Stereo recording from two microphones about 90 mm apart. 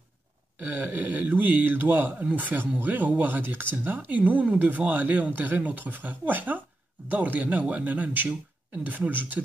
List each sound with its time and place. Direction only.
0.7 s speech: 20° right (ahead or behind)